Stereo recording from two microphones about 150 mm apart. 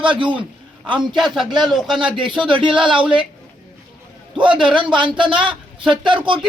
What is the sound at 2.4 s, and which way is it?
Speech, 35° right (ahead or behind).